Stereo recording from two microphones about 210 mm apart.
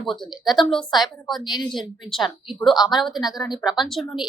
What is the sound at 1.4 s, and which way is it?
Speech, 20° left (ahead or behind).